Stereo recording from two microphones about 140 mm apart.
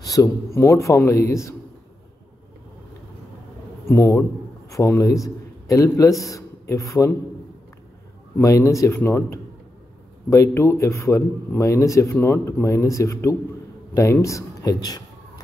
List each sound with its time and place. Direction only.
0.0 s speech: 25° left (ahead or behind)
3.9 s a man's voice: 20° left (ahead or behind)
8.4 s a man's voice: 25° left (ahead or behind)